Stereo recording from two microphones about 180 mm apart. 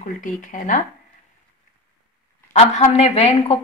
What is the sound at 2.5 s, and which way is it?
Speech, 35° left (ahead or behind).